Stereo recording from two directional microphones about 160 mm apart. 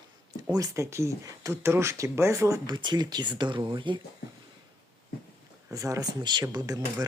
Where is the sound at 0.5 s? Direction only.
20° right (ahead or behind).